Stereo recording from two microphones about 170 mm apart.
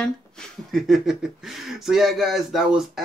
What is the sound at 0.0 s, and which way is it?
Speech, 5° left (ahead or behind).